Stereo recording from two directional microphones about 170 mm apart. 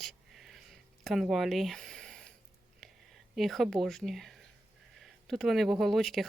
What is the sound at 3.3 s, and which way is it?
Speech, centre (ahead or behind).